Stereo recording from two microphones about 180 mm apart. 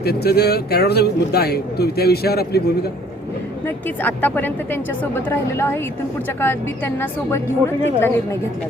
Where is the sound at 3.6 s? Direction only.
10° left (ahead or behind).